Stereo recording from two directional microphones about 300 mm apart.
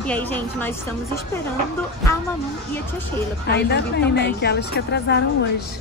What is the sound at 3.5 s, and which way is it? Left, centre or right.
A woman's voice, left.